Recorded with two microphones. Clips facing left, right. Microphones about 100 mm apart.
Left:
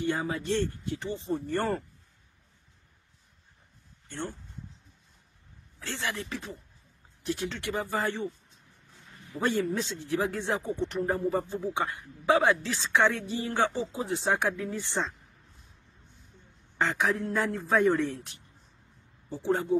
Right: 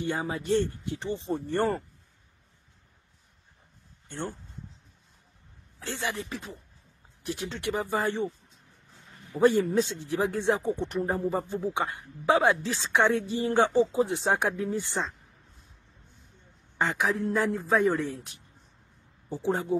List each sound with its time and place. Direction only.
0.0 s speech: 15° right (ahead or behind)
5.8 s speech: 20° right (ahead or behind)
9.3 s speech: 20° right (ahead or behind)
16.7 s a woman's voice: 15° right (ahead or behind)
17.0 s speech: 5° right (ahead or behind)
19.2 s speech: 15° right (ahead or behind)